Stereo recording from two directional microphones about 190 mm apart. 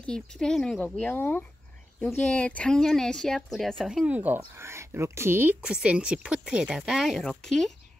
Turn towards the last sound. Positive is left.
turn(degrees=0)  # may be behind; listen again after turning